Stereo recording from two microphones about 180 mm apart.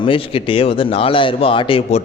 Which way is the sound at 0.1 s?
30° left (ahead or behind).